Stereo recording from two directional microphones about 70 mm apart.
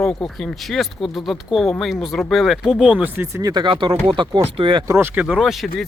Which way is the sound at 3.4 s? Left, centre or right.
Right.